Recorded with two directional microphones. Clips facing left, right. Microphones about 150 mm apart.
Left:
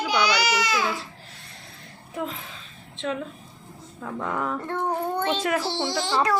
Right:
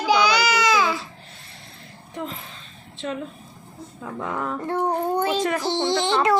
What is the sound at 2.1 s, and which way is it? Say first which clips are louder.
Speech: left 1 dB; centre (ahead or behind).